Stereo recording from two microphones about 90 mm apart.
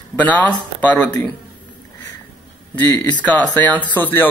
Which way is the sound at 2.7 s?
20° left (ahead or behind).